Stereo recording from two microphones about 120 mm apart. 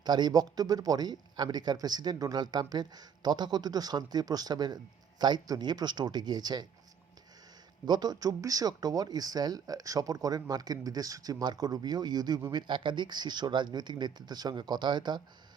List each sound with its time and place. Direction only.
0.0 s a man's voice: 35° right (ahead or behind)
7.9 s a man's voice: 35° right (ahead or behind)